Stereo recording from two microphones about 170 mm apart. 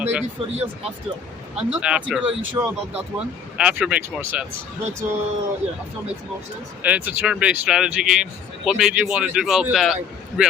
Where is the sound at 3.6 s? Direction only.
5° right (ahead or behind).